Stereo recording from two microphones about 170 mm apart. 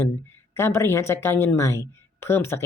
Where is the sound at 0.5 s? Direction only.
15° left (ahead or behind).